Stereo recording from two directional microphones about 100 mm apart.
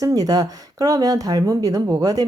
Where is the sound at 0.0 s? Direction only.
35° right (ahead or behind).